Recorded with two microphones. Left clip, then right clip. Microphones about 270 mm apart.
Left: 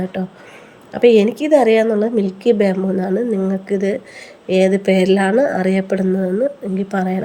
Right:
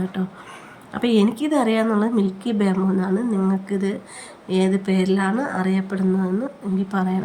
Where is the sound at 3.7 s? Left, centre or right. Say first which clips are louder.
Left 7 dB; centre.